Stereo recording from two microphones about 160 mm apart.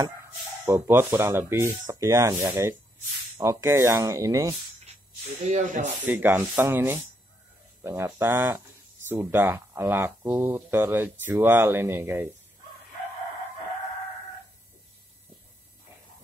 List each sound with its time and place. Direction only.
0.7 s speech: 15° right (ahead or behind)
5.5 s speech: 50° right (ahead or behind)
6.0 s speech: 10° right (ahead or behind)